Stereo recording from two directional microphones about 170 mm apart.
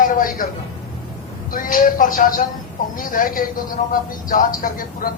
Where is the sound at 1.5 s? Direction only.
55° left (ahead or behind).